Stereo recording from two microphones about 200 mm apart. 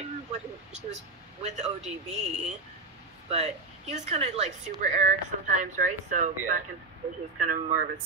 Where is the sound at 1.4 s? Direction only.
35° right (ahead or behind).